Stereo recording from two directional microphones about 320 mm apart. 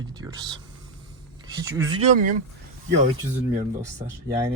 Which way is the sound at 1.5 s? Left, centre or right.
Centre.